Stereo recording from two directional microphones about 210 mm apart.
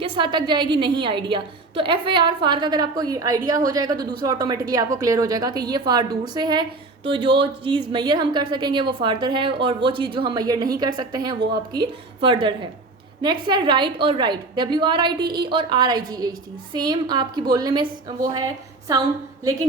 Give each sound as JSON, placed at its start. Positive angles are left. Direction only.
{"t": 0.0, "sound": "a woman's voice", "side_deg": -25}